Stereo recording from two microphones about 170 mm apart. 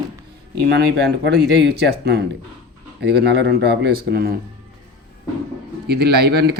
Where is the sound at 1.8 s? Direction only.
70° right (ahead or behind).